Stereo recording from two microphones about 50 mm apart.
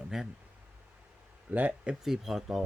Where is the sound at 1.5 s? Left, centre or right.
Right.